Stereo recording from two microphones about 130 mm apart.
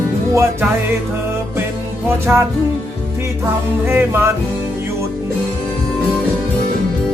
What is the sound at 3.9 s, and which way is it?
Music, 20° right (ahead or behind).